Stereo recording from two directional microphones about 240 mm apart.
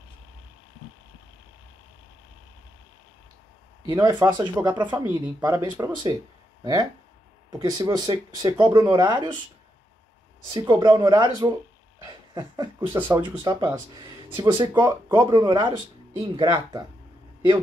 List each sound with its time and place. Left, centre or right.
3.8 s speech: centre
10.5 s speech: centre